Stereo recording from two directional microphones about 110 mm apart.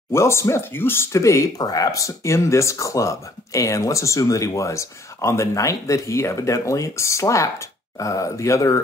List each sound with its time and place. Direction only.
0.1 s speech: 25° left (ahead or behind)